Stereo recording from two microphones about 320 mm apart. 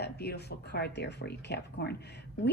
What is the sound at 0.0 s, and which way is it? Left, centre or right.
A woman's voice, left.